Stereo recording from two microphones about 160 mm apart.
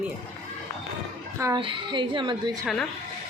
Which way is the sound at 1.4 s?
20° right (ahead or behind).